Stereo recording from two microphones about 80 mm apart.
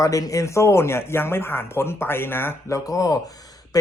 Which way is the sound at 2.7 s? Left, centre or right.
Left.